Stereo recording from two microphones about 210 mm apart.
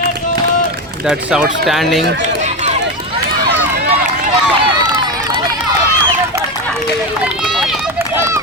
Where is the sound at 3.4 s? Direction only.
45° right (ahead or behind).